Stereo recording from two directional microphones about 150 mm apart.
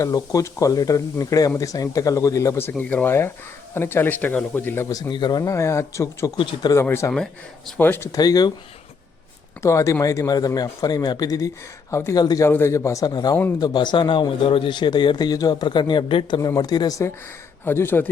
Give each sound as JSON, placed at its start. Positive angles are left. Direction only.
{"t": 0.0, "sound": "a man's voice", "side_deg": 25}
{"t": 6.3, "sound": "a man's voice", "side_deg": 30}
{"t": 6.8, "sound": "a man's voice", "side_deg": 15}
{"t": 9.6, "sound": "a man's voice", "side_deg": 20}
{"t": 17.7, "sound": "speech", "side_deg": 15}